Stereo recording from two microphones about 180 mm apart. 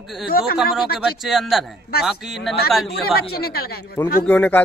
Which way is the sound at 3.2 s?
60° left (ahead or behind).